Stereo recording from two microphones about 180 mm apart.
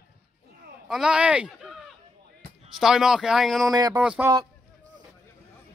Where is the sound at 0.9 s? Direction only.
5° right (ahead or behind).